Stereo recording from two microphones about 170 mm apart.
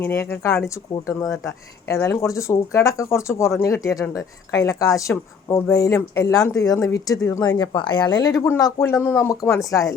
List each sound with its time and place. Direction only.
0.0 s speech: 15° left (ahead or behind)